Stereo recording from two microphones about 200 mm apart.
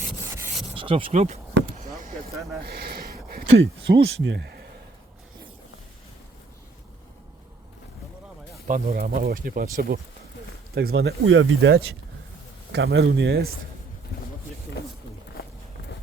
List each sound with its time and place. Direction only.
0.3 s rub: 10° right (ahead or behind)
0.7 s speech: 25° right (ahead or behind)
2.6 s a sound: 50° right (ahead or behind)
3.6 s speech: 55° right (ahead or behind)
8.6 s speech: 45° right (ahead or behind)
10.8 s speech: 55° right (ahead or behind)
12.7 s speech: 55° right (ahead or behind)